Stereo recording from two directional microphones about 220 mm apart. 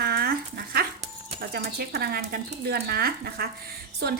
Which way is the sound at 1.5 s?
45° right (ahead or behind).